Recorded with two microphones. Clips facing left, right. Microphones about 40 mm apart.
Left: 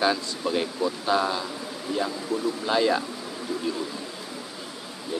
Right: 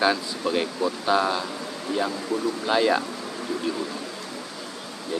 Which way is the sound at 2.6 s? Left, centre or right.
Centre.